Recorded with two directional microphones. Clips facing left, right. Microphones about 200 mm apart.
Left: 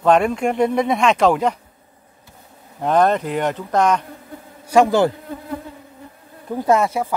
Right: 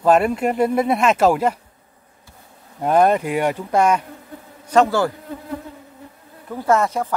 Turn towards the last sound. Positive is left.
turn(degrees=10)  # may be behind; listen again after turning